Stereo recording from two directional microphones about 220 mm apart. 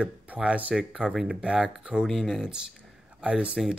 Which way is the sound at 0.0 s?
5° right (ahead or behind).